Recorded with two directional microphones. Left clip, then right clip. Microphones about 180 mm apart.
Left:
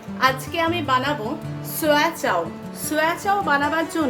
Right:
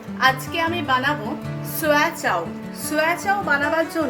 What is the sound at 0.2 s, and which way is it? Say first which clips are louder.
A woman's voice: right 1 dB; 25° left (ahead or behind).